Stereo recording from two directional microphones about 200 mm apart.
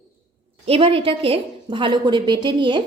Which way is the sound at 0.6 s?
30° right (ahead or behind).